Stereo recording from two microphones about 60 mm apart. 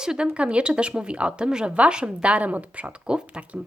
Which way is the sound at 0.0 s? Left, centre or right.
Centre.